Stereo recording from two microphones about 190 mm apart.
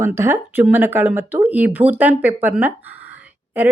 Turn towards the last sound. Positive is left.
turn(degrees=-10)  # may be behind; listen again after turning